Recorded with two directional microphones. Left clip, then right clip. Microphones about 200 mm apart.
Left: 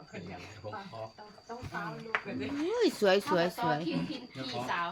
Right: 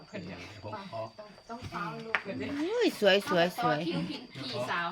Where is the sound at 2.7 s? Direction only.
15° left (ahead or behind).